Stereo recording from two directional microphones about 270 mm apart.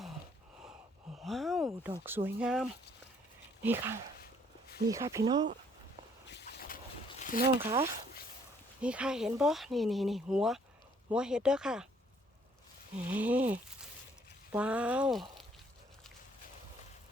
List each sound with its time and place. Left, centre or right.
1.1 s a sound: centre
2.0 s speech: centre
6.2 s vehicle: left
7.1 s a sound: left
8.8 s speech: centre
13.1 s speech: centre